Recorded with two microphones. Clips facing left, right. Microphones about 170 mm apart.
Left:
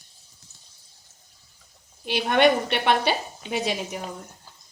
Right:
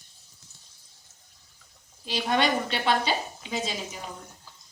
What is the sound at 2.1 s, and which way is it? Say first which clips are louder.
A woman's voice: left 6 dB; 65° left (ahead or behind).